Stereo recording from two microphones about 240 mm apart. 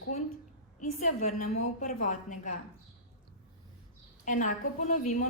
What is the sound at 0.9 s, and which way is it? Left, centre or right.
A woman's voice, left.